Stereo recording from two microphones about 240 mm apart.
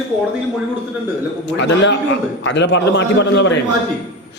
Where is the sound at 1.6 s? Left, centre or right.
Left.